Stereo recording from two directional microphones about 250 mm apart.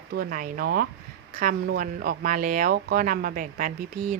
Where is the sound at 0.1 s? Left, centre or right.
Right.